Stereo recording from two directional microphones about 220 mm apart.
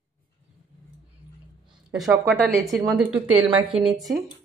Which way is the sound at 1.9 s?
Centre (ahead or behind).